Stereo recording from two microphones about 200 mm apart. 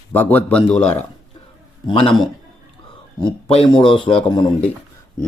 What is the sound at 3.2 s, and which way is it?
Speech, 25° left (ahead or behind).